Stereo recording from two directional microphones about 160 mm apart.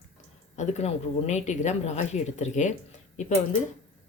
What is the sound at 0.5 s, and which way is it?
Speech, 45° left (ahead or behind).